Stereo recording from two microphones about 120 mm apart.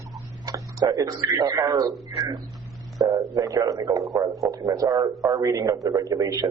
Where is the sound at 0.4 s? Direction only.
30° right (ahead or behind).